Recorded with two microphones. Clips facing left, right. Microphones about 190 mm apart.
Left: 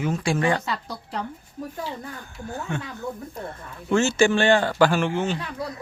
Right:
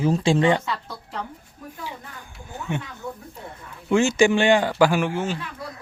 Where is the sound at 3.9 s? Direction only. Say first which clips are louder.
Right 1 dB; 15° right (ahead or behind).